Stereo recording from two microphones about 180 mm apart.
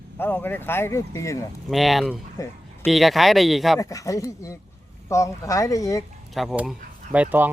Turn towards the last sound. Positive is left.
turn(degrees=-10)  # may be behind; listen again after turning